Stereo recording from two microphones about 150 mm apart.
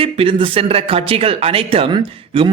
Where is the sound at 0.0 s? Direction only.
40° right (ahead or behind).